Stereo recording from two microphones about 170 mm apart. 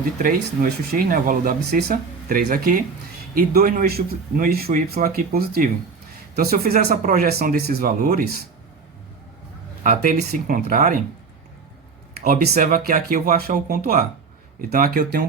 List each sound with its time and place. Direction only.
0.0 s speech: 55° right (ahead or behind)
9.8 s speech: 55° right (ahead or behind)
12.2 s speech: 55° right (ahead or behind)